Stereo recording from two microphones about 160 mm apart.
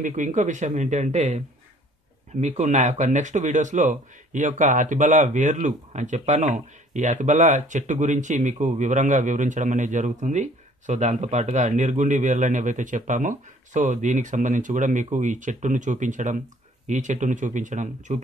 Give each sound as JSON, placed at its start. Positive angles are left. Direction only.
{"t": 0.0, "sound": "a man's voice", "side_deg": -50}
{"t": 2.4, "sound": "a man's voice", "side_deg": -45}